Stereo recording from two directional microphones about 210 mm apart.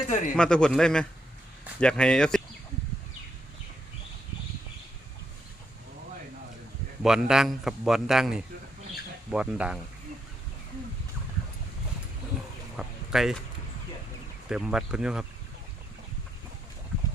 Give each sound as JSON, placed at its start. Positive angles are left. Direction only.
{"t": 0.1, "sound": "a man's voice", "side_deg": 35}
{"t": 0.3, "sound": "a man's voice", "side_deg": 5}
{"t": 7.0, "sound": "a man's voice", "side_deg": 0}
{"t": 12.7, "sound": "a sound", "side_deg": 0}
{"t": 14.5, "sound": "a man's voice", "side_deg": -5}